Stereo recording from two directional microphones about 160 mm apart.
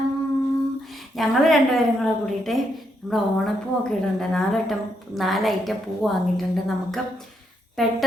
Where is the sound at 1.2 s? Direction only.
Centre (ahead or behind).